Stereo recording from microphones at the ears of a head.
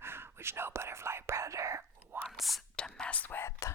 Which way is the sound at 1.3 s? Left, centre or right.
Right.